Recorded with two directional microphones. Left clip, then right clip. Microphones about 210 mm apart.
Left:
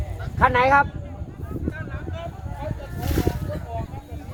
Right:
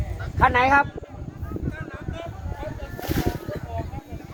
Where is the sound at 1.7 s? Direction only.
50° right (ahead or behind).